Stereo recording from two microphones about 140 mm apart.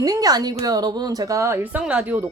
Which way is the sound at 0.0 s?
25° right (ahead or behind).